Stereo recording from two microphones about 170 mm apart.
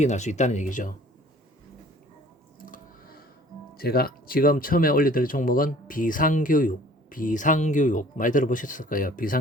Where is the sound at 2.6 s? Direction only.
55° left (ahead or behind).